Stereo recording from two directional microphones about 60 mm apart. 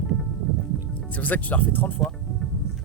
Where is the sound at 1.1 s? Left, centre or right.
Left.